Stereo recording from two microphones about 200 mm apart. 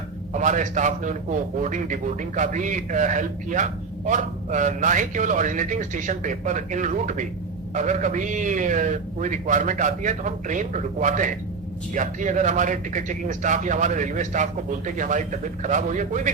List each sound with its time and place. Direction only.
0.3 s a man's voice: 40° right (ahead or behind)